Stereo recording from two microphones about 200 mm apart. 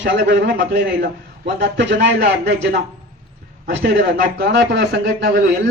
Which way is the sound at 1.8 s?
60° right (ahead or behind).